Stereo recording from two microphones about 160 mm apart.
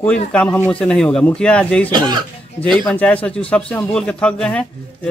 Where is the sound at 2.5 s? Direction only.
5° left (ahead or behind).